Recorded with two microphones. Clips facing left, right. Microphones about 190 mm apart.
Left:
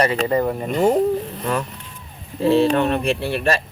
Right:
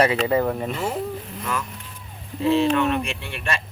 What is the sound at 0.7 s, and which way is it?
Speech, 40° left (ahead or behind).